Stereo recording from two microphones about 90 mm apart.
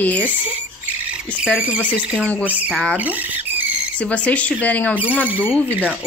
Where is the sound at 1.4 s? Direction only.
15° right (ahead or behind).